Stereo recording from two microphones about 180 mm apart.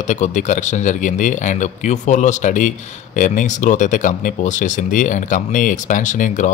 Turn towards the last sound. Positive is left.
turn(degrees=45)  # may be behind; listen again after turning